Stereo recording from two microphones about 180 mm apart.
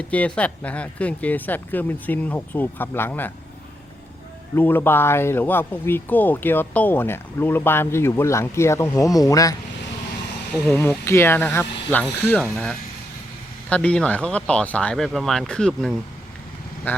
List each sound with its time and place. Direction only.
0.0 s speech: 10° left (ahead or behind)
4.5 s speech: 10° left (ahead or behind)
10.7 s speech: 15° left (ahead or behind)
13.7 s speech: 5° left (ahead or behind)